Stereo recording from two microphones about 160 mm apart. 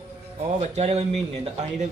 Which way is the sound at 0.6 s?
45° right (ahead or behind).